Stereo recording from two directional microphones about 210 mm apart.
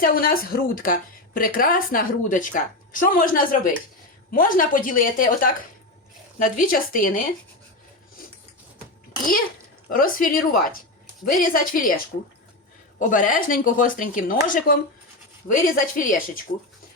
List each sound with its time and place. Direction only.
0.0 s a woman's voice: 45° left (ahead or behind)
9.9 s speech: 40° left (ahead or behind)
13.0 s a woman's voice: 40° left (ahead or behind)